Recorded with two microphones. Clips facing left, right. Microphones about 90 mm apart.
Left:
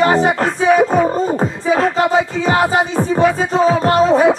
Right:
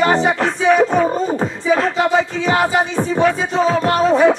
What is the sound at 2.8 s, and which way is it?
Speech, 5° left (ahead or behind).